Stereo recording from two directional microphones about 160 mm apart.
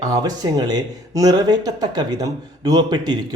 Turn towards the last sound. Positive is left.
turn(degrees=-25)  # may be behind; listen again after turning